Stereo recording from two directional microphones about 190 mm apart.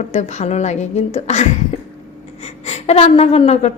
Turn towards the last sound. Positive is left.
turn(degrees=35)  # may be behind; listen again after turning